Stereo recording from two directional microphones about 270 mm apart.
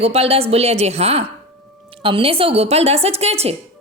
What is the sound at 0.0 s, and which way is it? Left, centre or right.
A woman's voice, right.